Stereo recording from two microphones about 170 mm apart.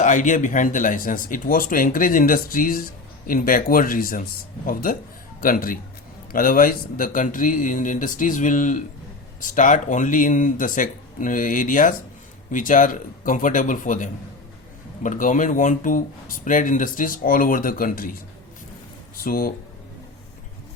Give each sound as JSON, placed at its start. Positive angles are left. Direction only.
{"t": 0.0, "sound": "a man's voice", "side_deg": 45}
{"t": 19.2, "sound": "speech", "side_deg": 60}